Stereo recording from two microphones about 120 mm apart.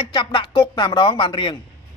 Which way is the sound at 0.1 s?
40° left (ahead or behind).